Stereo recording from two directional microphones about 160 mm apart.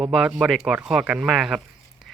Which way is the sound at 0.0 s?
5° right (ahead or behind).